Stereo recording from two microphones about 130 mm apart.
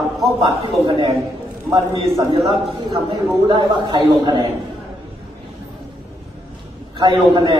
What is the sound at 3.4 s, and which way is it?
Speech, 35° right (ahead or behind).